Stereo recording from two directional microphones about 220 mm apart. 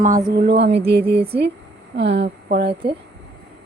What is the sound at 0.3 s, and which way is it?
Speech, 50° right (ahead or behind).